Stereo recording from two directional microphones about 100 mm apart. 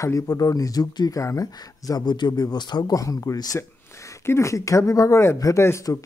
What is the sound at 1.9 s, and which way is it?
Speech, 45° left (ahead or behind).